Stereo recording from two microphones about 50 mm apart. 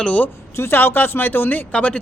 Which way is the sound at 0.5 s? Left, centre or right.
Left.